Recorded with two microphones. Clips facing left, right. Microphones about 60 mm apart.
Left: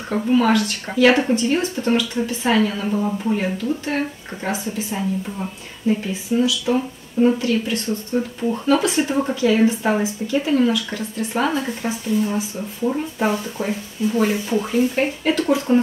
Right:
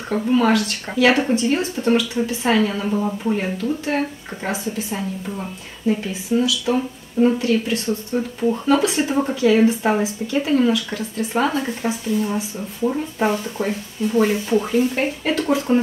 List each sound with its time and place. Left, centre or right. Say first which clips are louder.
0.1 s speech: even; centre
6.3 s speech: even; centre
7.2 s speech: even; centre